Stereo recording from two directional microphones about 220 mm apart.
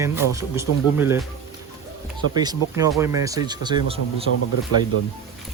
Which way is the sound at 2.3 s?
20° right (ahead or behind).